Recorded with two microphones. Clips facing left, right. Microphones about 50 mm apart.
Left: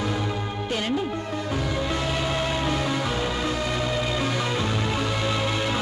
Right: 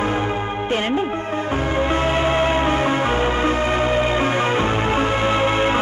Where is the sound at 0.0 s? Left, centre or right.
Right.